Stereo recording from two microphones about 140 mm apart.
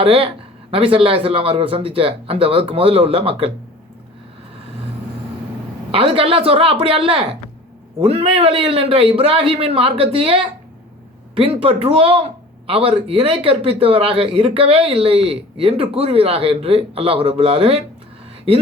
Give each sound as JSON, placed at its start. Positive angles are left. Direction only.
{"t": 0.0, "sound": "a man's voice", "side_deg": -40}
{"t": 5.9, "sound": "a man's voice", "side_deg": -40}